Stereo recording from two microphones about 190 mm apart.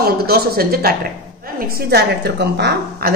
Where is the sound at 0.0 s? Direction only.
55° right (ahead or behind).